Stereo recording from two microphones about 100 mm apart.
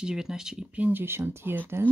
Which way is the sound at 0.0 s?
5° right (ahead or behind).